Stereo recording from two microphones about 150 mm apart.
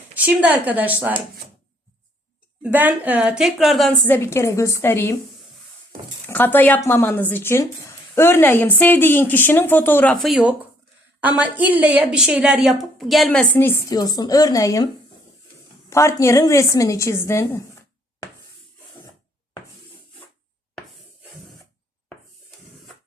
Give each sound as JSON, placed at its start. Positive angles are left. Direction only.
{"t": 0.3, "sound": "a woman's voice", "side_deg": -10}
{"t": 2.6, "sound": "a woman's voice", "side_deg": -10}
{"t": 4.0, "sound": "speech", "side_deg": 15}
{"t": 6.2, "sound": "a woman's voice", "side_deg": 15}
{"t": 13.9, "sound": "a woman's voice", "side_deg": 25}
{"t": 15.9, "sound": "a woman's voice", "side_deg": 20}